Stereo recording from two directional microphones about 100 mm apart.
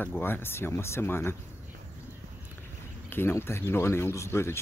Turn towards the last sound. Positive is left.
turn(degrees=25)  # may be behind; listen again after turning